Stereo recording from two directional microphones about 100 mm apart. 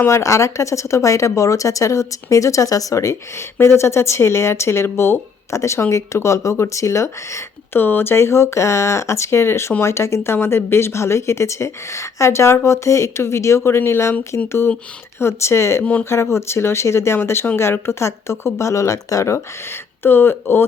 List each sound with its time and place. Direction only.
0.0 s speech: 30° left (ahead or behind)
15.8 s speech: 15° left (ahead or behind)
16.0 s speech: 25° left (ahead or behind)